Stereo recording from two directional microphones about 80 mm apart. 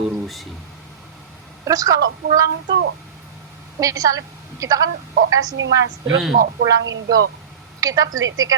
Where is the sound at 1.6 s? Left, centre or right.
Right.